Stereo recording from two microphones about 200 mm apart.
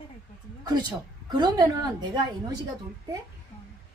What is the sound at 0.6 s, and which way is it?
A woman's voice, 20° right (ahead or behind).